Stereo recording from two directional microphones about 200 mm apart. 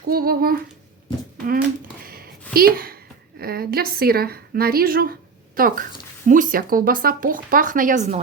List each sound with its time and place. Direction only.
0.1 s speech: 50° right (ahead or behind)
2.0 s a sound: 50° right (ahead or behind)
3.4 s speech: 50° right (ahead or behind)